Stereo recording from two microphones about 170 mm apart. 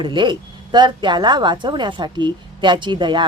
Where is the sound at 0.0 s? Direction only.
25° right (ahead or behind).